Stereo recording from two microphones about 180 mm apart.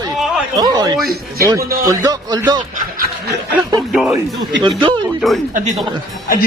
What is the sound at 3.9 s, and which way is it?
Speech, 5° right (ahead or behind).